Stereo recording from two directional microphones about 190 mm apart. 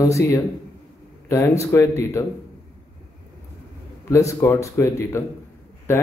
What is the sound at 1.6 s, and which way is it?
Speech, 15° left (ahead or behind).